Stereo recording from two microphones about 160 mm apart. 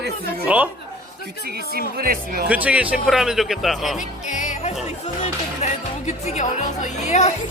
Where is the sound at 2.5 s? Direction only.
10° right (ahead or behind).